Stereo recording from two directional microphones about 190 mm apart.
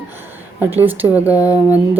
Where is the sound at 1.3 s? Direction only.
15° left (ahead or behind).